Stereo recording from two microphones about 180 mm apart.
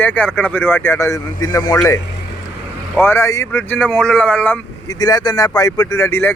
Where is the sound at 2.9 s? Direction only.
10° left (ahead or behind).